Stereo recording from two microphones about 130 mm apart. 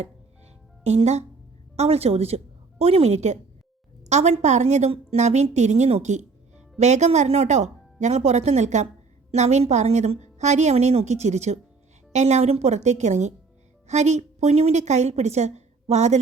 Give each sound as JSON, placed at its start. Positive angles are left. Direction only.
{"t": 0.9, "sound": "a woman's voice", "side_deg": -55}